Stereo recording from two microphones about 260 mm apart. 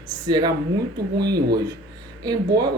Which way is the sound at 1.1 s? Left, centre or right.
Right.